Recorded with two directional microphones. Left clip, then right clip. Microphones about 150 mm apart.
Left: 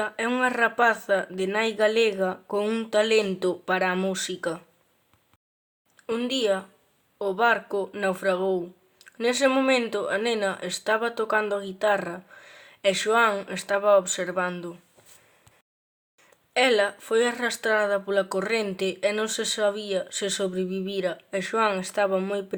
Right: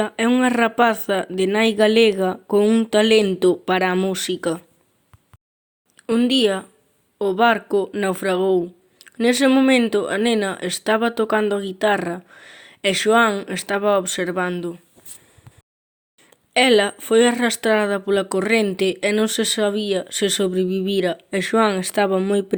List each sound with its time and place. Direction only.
0.0 s speech: 35° right (ahead or behind)
6.0 s speech: 45° right (ahead or behind)
16.2 s speech: 40° right (ahead or behind)